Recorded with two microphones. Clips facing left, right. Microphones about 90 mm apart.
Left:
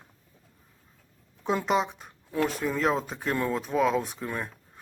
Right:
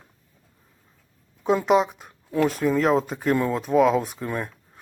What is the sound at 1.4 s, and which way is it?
Speech, centre (ahead or behind).